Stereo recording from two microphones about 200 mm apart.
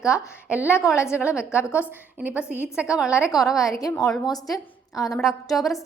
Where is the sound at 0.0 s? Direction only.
5° right (ahead or behind).